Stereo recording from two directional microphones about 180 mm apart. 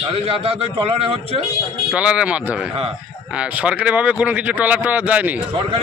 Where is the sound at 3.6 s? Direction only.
5° right (ahead or behind).